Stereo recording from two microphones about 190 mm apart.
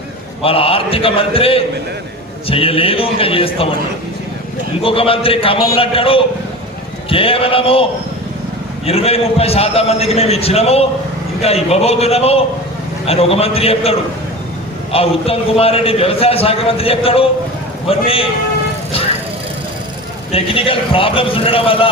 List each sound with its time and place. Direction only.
0.4 s a man's voice: 30° left (ahead or behind)
4.8 s a man's voice: 30° left (ahead or behind)
8.9 s a man's voice: 30° left (ahead or behind)
20.3 s a man's voice: 30° left (ahead or behind)